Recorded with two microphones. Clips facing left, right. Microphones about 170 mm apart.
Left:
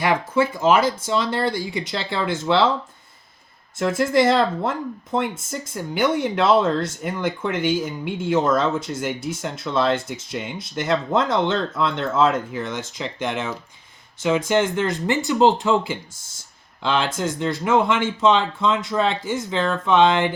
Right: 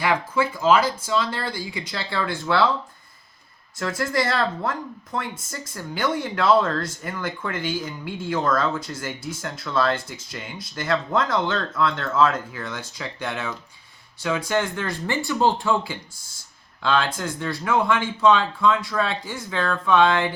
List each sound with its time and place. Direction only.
0.0 s speech: 25° left (ahead or behind)
3.8 s speech: 25° left (ahead or behind)